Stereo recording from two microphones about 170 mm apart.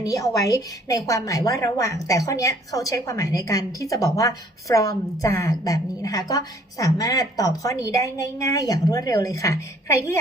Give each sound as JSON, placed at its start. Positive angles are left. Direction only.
{"t": 0.0, "sound": "a woman's voice", "side_deg": 20}